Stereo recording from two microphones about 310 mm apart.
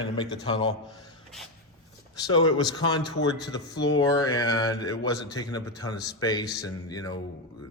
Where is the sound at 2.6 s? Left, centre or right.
Centre.